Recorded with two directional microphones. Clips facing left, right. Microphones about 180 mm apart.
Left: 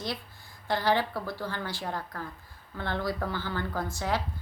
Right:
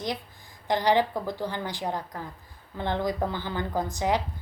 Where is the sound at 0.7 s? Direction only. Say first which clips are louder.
Right 4 dB; 15° right (ahead or behind).